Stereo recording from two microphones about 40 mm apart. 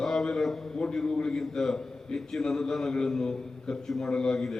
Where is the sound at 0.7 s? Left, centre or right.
Centre.